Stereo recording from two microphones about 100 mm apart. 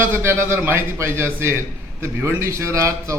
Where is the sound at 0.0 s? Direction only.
25° right (ahead or behind).